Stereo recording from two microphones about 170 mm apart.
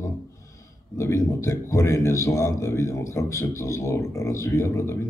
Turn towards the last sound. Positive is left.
turn(degrees=15)  # may be behind; listen again after turning